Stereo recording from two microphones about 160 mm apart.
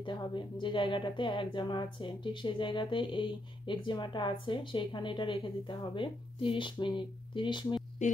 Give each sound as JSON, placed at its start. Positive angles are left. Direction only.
{"t": 0.0, "sound": "speech", "side_deg": 30}